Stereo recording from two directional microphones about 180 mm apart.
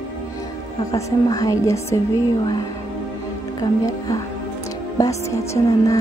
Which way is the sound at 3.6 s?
20° left (ahead or behind).